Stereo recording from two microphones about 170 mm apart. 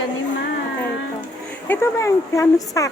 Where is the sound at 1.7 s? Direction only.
15° left (ahead or behind).